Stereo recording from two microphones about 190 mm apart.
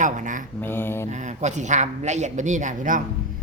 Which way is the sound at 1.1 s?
40° right (ahead or behind).